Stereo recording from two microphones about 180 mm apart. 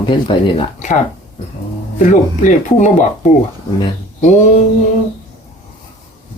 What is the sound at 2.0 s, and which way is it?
Speech, 45° left (ahead or behind).